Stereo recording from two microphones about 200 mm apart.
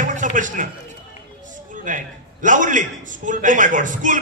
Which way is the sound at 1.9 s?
40° right (ahead or behind).